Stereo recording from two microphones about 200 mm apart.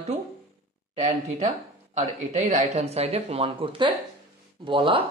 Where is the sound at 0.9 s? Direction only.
35° right (ahead or behind).